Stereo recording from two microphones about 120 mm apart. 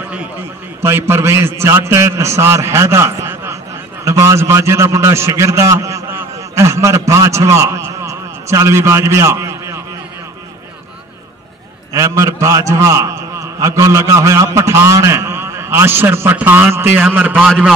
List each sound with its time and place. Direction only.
0.8 s a man's voice: 20° right (ahead or behind)
11.9 s a man's voice: 25° right (ahead or behind)